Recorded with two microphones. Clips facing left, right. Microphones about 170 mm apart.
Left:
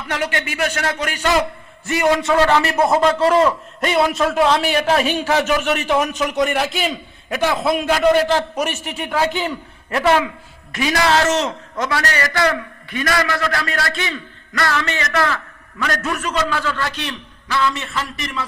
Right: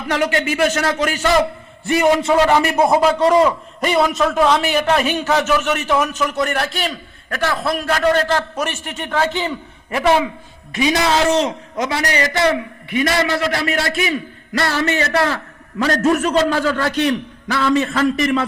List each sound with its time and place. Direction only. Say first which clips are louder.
0.1 s a man's voice: right 5 dB; 35° right (ahead or behind)
1.9 s a man's voice: right 2 dB; 20° right (ahead or behind)
2.6 s a man's voice: right 1 dB; 5° right (ahead or behind)
3.9 s a man's voice: even; centre (ahead or behind)
6.4 s a man's voice: left 4 dB; centre (ahead or behind)
7.3 s a man's voice: left 2 dB; 20° left (ahead or behind)
9.9 s a man's voice: right 1 dB; 15° right (ahead or behind); by 17.6 s 50° right (ahead or behind)